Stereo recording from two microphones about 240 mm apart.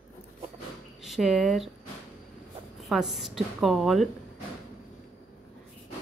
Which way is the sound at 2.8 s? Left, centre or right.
Centre.